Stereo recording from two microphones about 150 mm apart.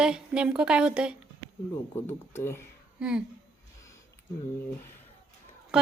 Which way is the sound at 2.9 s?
5° right (ahead or behind).